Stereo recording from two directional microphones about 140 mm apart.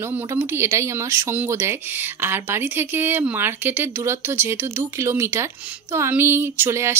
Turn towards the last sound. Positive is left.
turn(degrees=-15)  # may be behind; listen again after turning